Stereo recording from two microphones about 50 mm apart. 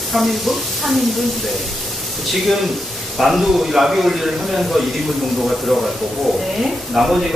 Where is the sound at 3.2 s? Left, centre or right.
Centre.